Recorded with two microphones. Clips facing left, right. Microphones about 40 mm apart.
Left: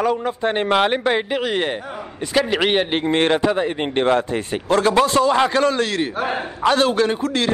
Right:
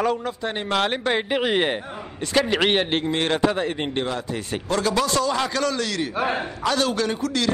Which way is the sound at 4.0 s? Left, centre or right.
Left.